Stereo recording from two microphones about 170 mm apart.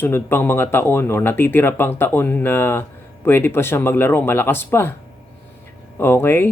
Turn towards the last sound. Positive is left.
turn(degrees=15)  # may be behind; listen again after turning